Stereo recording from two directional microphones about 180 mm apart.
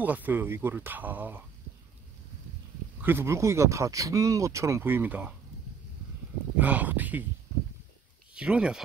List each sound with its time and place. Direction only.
0.0 s speech: 10° right (ahead or behind)
3.0 s speech: 10° right (ahead or behind)
6.5 s speech: 10° right (ahead or behind)
8.4 s speech: 5° right (ahead or behind)